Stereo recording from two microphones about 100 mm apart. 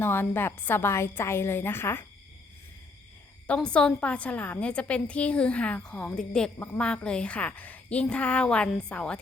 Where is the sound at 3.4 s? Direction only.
10° left (ahead or behind).